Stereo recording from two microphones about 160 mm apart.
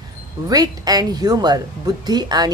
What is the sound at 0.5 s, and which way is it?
A woman's voice, 25° right (ahead or behind).